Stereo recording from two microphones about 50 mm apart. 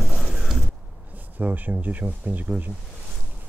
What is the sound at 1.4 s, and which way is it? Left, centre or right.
Speech, right.